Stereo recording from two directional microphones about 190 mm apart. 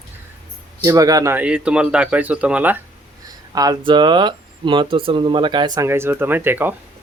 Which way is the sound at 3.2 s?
20° right (ahead or behind).